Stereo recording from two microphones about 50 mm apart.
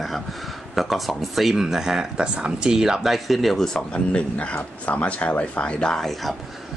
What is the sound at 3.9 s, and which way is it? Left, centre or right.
Speech, left.